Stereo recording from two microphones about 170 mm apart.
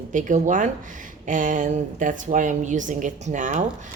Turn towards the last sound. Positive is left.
turn(degrees=-45)  # may be behind; listen again after turning